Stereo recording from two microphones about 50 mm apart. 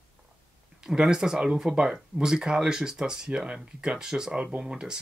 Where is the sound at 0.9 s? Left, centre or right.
Centre.